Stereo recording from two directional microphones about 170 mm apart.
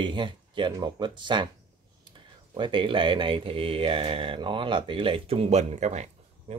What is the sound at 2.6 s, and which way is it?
Speech, 30° right (ahead or behind).